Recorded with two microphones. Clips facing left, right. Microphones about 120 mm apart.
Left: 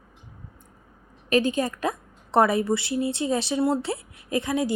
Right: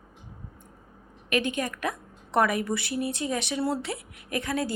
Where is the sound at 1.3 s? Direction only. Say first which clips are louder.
Left 5 dB; 35° left (ahead or behind).